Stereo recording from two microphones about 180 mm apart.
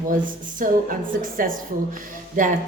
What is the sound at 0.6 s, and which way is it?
A woman's voice, 50° right (ahead or behind).